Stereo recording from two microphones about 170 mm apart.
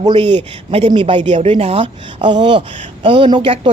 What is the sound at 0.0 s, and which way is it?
A woman's voice, 30° right (ahead or behind).